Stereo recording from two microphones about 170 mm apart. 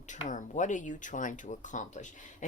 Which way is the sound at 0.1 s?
50° left (ahead or behind).